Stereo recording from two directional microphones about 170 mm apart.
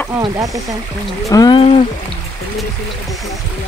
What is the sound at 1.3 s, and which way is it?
Speech, 20° left (ahead or behind).